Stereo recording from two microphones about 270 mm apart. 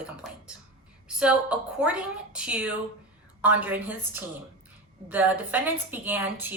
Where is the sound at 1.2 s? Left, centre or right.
Centre.